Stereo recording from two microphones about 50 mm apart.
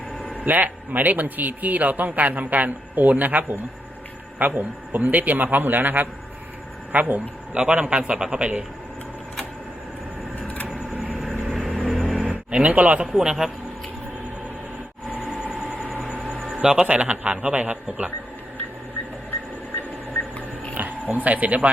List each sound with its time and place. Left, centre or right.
0.3 s speech: right
7.5 s a man's voice: right
11.1 s vehicle: centre
11.4 s a sound: centre
12.5 s a man's voice: right
13.1 s a man's voice: centre
15.2 s vehicle: centre
16.6 s a man's voice: centre
20.7 s speech: right